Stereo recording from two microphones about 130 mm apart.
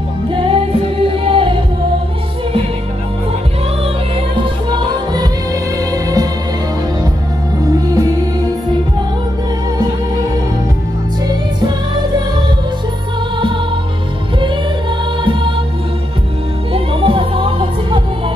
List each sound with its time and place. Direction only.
0.3 s music: 45° right (ahead or behind)
4.4 s music: 35° right (ahead or behind)
7.7 s music: 30° right (ahead or behind)
16.7 s music: 45° right (ahead or behind)